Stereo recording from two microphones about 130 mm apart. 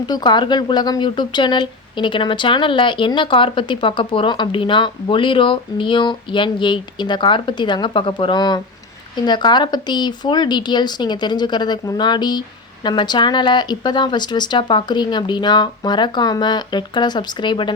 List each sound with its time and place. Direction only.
0.1 s speech: 35° left (ahead or behind)